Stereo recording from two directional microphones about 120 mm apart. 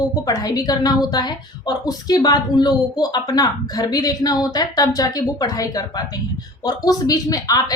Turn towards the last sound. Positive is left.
turn(degrees=30)  # may be behind; listen again after turning